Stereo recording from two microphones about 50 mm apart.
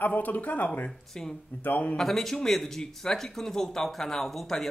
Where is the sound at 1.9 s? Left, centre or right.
Centre.